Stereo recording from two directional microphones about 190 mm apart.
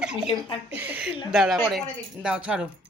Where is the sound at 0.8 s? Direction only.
10° right (ahead or behind).